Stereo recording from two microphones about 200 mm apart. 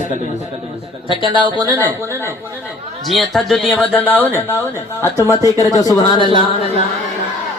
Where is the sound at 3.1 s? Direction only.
Centre (ahead or behind); by 6.0 s 20° left (ahead or behind).